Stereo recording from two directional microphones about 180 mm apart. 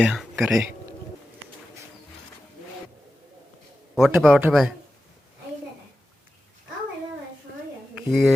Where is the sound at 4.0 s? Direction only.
5° right (ahead or behind).